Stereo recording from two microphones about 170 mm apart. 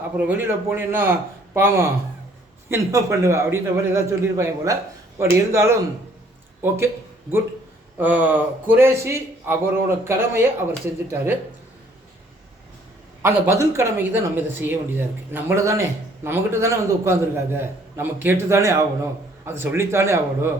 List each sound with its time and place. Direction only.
0.2 s a man's voice: 10° right (ahead or behind)
13.2 s a man's voice: 15° right (ahead or behind)